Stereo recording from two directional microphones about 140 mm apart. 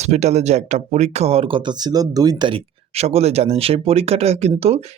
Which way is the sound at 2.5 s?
50° right (ahead or behind).